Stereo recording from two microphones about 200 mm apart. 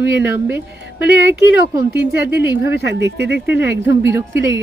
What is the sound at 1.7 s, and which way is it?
Speech, 15° right (ahead or behind).